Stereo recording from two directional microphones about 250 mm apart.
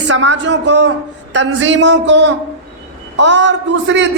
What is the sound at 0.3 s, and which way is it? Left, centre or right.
A woman's voice, right.